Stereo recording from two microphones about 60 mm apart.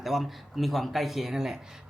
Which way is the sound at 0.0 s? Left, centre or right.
Centre.